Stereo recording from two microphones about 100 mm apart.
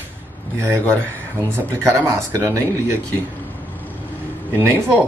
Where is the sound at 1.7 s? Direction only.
25° right (ahead or behind).